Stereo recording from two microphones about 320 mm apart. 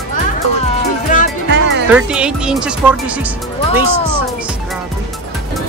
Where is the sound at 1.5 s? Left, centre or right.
Right.